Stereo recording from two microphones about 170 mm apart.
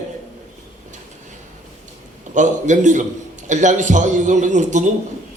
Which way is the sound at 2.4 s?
45° right (ahead or behind).